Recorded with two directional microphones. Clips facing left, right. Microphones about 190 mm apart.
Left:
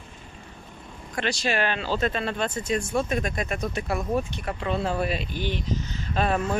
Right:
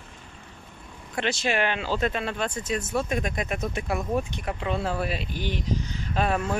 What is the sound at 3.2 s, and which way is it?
Speech, 20° right (ahead or behind).